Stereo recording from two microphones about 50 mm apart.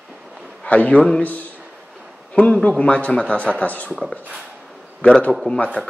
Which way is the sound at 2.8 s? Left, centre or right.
Left.